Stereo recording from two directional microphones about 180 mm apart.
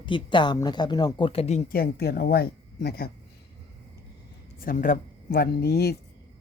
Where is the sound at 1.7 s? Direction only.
60° left (ahead or behind).